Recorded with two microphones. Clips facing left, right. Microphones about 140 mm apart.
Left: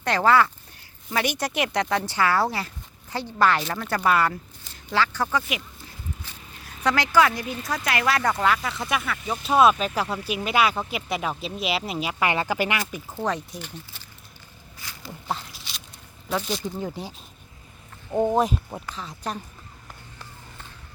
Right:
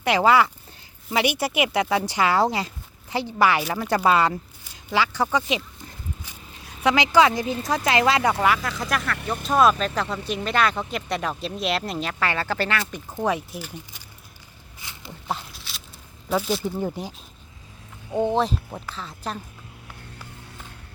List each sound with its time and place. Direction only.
0.0 s speech: 10° right (ahead or behind)
6.2 s a sound: 15° right (ahead or behind)
7.9 s speech: 25° right (ahead or behind)
8.2 s speech: 10° right (ahead or behind); by 12.8 s 15° left (ahead or behind)
13.1 s speech: 10° right (ahead or behind)
14.8 s a sound: 20° right (ahead or behind)
15.3 s a sound: centre (ahead or behind)
16.3 s speech: 5° right (ahead or behind)
18.2 s speech: 10° left (ahead or behind)